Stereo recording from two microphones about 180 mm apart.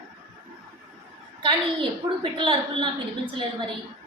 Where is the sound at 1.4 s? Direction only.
30° right (ahead or behind).